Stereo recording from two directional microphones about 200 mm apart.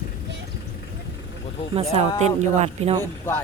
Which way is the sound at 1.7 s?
30° right (ahead or behind).